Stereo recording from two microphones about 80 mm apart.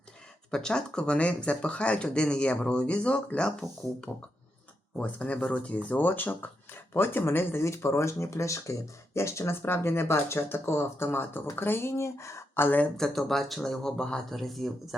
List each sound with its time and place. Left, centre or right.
0.5 s speech: centre
4.9 s speech: centre; by 12.6 s left
12.6 s speech: left
13.0 s speech: centre
14.3 s speech: centre